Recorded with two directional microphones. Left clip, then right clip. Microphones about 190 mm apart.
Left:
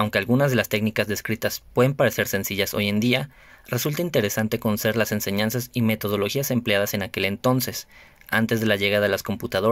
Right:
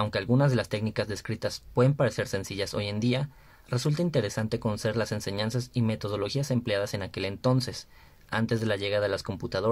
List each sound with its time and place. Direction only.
0.0 s speech: 15° left (ahead or behind)